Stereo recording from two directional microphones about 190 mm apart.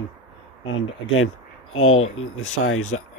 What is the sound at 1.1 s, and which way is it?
Speech, 90° left.